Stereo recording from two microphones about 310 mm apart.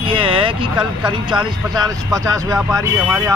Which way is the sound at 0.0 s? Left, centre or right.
Centre.